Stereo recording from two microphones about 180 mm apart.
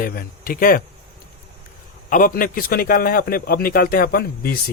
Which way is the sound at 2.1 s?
50° left (ahead or behind).